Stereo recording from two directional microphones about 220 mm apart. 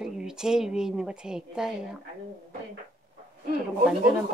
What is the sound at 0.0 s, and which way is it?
A woman's voice, 5° right (ahead or behind).